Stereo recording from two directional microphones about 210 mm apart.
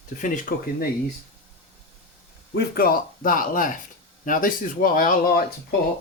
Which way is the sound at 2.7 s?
45° left (ahead or behind).